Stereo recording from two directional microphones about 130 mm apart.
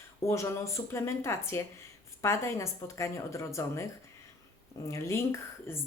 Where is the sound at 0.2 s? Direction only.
20° left (ahead or behind).